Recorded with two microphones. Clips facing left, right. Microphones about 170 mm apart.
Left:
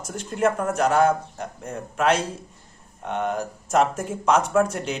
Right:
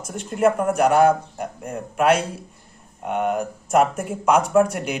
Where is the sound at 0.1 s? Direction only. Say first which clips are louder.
Right 3 dB; 5° right (ahead or behind).